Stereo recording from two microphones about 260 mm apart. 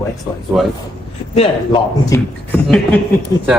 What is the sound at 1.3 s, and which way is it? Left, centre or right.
Speech, centre.